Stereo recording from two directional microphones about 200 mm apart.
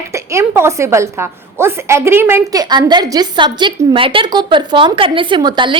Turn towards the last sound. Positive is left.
turn(degrees=-25)  # may be behind; listen again after turning